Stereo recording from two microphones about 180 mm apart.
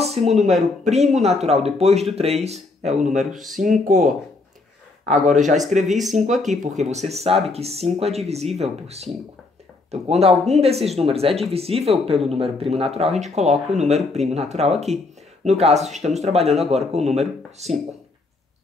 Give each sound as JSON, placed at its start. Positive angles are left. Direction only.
{"t": 0.0, "sound": "speech", "side_deg": -35}
{"t": 3.3, "sound": "speech", "side_deg": 0}
{"t": 3.5, "sound": "speech", "side_deg": -45}
{"t": 5.0, "sound": "speech", "side_deg": -40}
{"t": 5.9, "sound": "speech", "side_deg": 0}
{"t": 6.1, "sound": "speech", "side_deg": -40}